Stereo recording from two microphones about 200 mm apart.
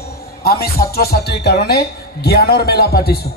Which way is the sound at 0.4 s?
50° left (ahead or behind).